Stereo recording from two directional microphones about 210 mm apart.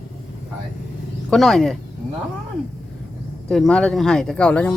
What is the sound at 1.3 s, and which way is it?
Speech, centre (ahead or behind).